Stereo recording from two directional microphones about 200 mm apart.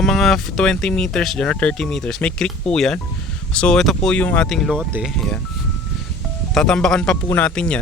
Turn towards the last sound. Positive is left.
turn(degrees=5)  # may be behind; listen again after turning